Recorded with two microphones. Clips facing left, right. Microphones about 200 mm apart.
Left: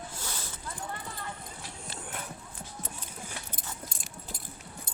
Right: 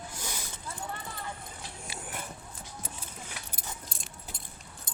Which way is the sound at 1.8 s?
10° right (ahead or behind).